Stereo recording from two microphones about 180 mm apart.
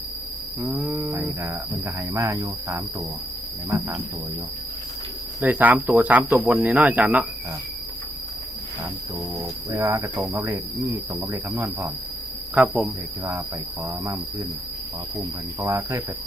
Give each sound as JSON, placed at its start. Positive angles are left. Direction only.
{"t": 0.6, "sound": "speech", "side_deg": 0}
{"t": 5.4, "sound": "speech", "side_deg": -10}
{"t": 9.4, "sound": "speech", "side_deg": -20}